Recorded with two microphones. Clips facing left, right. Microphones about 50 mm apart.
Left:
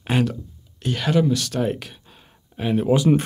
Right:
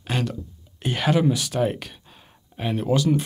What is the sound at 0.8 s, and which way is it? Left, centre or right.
Speech, centre.